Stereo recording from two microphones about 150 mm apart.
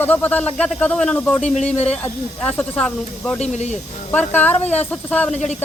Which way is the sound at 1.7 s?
45° left (ahead or behind).